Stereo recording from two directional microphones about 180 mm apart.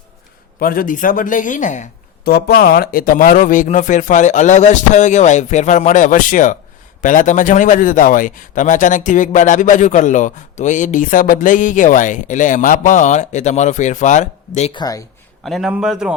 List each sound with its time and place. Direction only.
0.6 s a man's voice: 50° left (ahead or behind)
2.2 s a man's voice: 60° left (ahead or behind); by 14.7 s 40° left (ahead or behind)
14.7 s speech: 20° left (ahead or behind)
15.4 s a man's voice: centre (ahead or behind)